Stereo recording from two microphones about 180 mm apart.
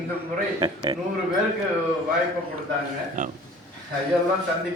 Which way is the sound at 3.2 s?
45° right (ahead or behind).